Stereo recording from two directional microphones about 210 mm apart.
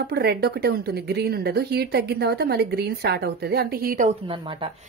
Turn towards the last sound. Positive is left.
turn(degrees=-25)  # may be behind; listen again after turning